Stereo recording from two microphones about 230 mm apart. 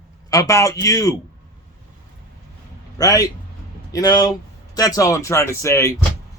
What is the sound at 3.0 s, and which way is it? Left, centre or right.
A man's voice, centre.